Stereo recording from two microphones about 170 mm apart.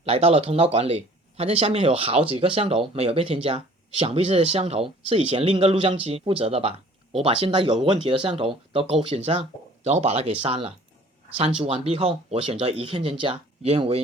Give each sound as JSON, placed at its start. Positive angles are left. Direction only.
{"t": 0.0, "sound": "speech", "side_deg": -35}